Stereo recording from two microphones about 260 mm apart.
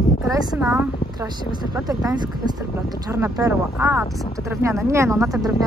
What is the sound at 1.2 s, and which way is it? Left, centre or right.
Speech, centre.